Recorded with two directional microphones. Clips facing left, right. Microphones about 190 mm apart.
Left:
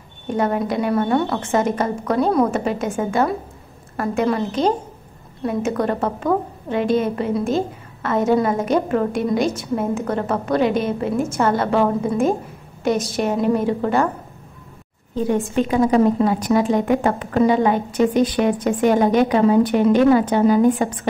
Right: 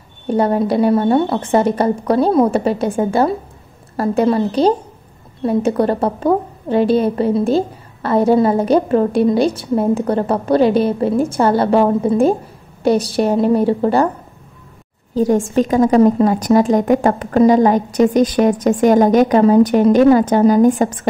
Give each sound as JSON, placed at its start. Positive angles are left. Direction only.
{"t": 0.3, "sound": "a woman's voice", "side_deg": -35}
{"t": 15.4, "sound": "a woman's voice", "side_deg": -40}